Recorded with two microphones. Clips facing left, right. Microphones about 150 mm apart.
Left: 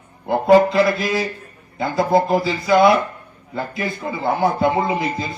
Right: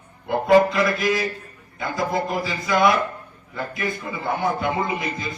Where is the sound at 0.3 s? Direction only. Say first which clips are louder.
Left 3 dB; 30° left (ahead or behind).